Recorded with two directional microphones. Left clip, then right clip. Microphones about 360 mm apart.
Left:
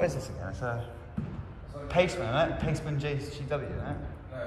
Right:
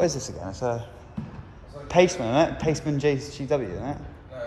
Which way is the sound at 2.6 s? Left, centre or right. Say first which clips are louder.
Right 10 dB; right.